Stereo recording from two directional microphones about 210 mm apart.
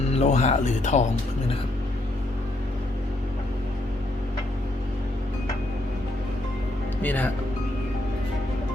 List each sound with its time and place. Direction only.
0.1 s speech: 30° left (ahead or behind)
7.0 s speech: 10° left (ahead or behind)